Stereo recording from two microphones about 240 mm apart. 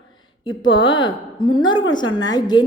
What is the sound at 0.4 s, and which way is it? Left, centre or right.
A woman's voice, centre.